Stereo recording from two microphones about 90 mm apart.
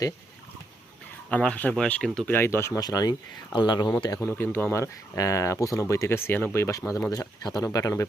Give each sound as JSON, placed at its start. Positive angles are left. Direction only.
{"t": 1.3, "sound": "speech", "side_deg": 15}
{"t": 2.3, "sound": "speech", "side_deg": 25}
{"t": 2.7, "sound": "speech", "side_deg": 45}
{"t": 3.5, "sound": "speech", "side_deg": 55}
{"t": 4.2, "sound": "speech", "side_deg": 25}